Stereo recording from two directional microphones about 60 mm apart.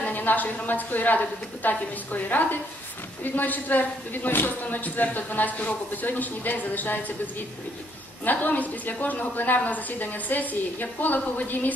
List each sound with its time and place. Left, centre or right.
0.0 s a sound: left
0.7 s a man's voice: left
8.3 s a man's voice: left